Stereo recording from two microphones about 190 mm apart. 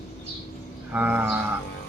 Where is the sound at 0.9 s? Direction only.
10° right (ahead or behind).